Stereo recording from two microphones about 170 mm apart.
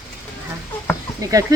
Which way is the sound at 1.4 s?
20° right (ahead or behind).